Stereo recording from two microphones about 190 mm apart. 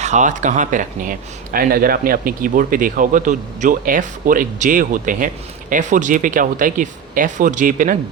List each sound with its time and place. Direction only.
0.0 s a man's voice: 40° right (ahead or behind)